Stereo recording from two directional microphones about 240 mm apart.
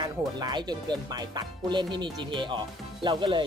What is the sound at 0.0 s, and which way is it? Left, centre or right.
Speech, centre.